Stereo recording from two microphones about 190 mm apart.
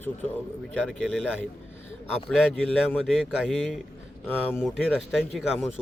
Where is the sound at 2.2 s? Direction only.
5° left (ahead or behind).